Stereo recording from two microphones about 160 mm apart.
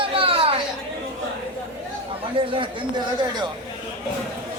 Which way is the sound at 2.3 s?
35° right (ahead or behind).